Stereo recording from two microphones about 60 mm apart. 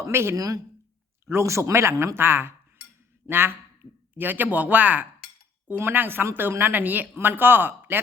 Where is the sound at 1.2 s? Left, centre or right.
Right.